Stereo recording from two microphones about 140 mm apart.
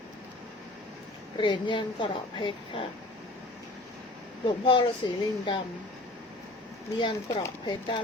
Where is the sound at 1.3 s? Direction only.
35° left (ahead or behind).